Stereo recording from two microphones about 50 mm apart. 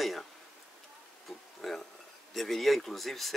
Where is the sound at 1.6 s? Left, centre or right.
Centre.